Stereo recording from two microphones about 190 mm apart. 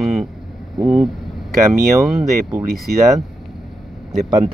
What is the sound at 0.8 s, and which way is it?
Vehicle, centre (ahead or behind).